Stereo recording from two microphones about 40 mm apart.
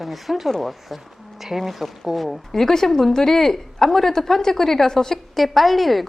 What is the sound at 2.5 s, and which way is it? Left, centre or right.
A woman's voice, centre.